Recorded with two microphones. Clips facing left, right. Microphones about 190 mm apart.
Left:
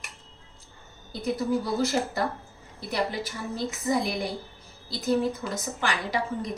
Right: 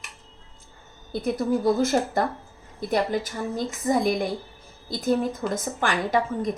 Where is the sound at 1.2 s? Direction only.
50° right (ahead or behind).